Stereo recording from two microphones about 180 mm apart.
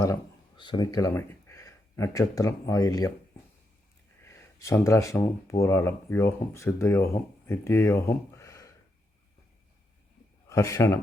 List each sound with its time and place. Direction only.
0.0 s speech: 20° left (ahead or behind)
4.2 s speech: 15° left (ahead or behind)
10.5 s a man's voice: 15° left (ahead or behind)